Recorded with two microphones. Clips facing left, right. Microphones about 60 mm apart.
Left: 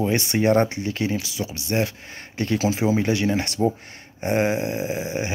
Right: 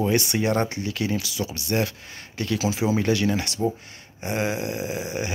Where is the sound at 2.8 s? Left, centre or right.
Left.